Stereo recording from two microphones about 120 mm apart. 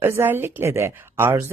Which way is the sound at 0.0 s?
20° right (ahead or behind).